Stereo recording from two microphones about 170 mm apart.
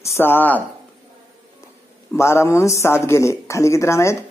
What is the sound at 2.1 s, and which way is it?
A man's voice, 15° left (ahead or behind).